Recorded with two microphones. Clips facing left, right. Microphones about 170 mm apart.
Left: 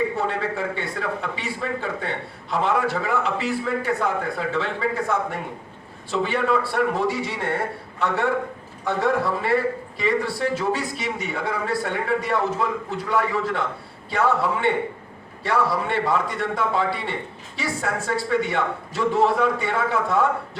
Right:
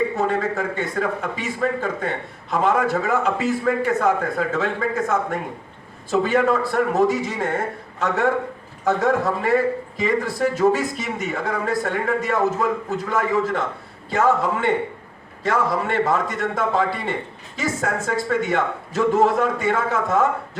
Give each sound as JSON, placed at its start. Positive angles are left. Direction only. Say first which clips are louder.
{"t": 0.2, "sound": "a man's voice", "louder": "right 3 dB", "side_deg": -45}